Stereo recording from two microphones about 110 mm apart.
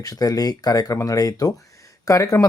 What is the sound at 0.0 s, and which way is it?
Speech, 35° left (ahead or behind).